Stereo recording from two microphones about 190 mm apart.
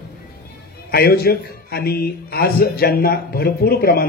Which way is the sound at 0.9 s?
55° left (ahead or behind).